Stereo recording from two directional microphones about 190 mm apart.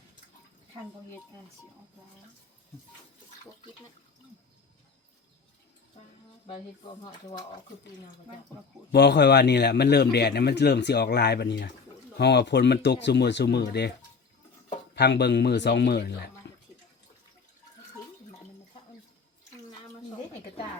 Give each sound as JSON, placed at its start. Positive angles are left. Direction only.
{"t": 7.0, "sound": "speech", "side_deg": 20}
{"t": 8.9, "sound": "speech", "side_deg": 60}
{"t": 14.9, "sound": "speech", "side_deg": 60}